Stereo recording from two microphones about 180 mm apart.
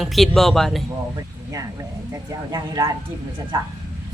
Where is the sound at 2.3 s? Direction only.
20° right (ahead or behind).